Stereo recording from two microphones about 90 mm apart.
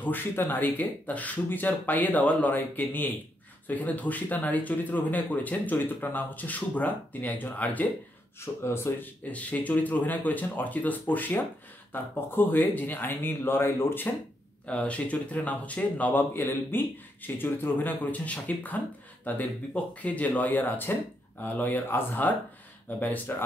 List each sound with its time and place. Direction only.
0.0 s speech: 20° left (ahead or behind)
8.4 s speech: 30° left (ahead or behind)